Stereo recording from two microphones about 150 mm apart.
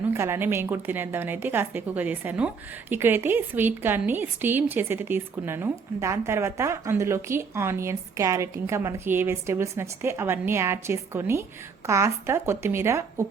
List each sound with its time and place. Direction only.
0.1 s a woman's voice: 15° right (ahead or behind)